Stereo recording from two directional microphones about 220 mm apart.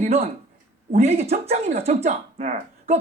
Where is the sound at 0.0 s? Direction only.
30° right (ahead or behind).